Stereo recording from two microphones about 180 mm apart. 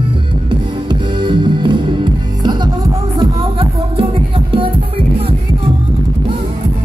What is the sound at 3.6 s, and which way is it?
Music, 30° right (ahead or behind).